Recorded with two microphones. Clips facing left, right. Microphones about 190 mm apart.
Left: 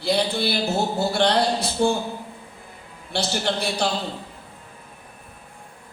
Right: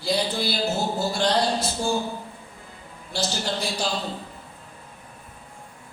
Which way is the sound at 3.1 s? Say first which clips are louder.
Left 3 dB; 65° left (ahead or behind).